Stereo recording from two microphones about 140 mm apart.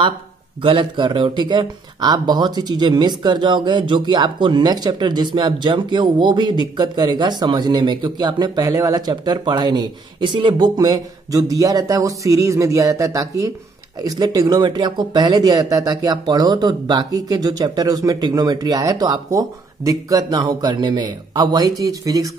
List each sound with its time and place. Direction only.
0.6 s speech: 40° right (ahead or behind)